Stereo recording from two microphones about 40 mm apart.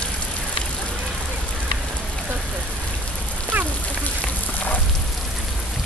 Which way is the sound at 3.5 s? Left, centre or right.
Right.